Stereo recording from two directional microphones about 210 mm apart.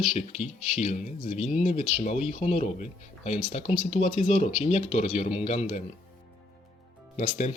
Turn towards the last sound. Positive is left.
turn(degrees=35)  # may be behind; listen again after turning